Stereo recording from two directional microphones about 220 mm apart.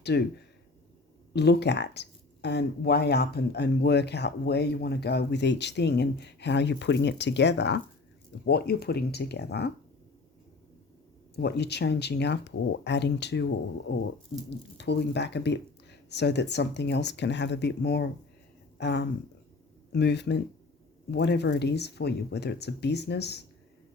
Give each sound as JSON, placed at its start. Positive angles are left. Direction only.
{"t": 0.0, "sound": "speech", "side_deg": 50}
{"t": 1.3, "sound": "speech", "side_deg": 50}
{"t": 11.3, "sound": "speech", "side_deg": 50}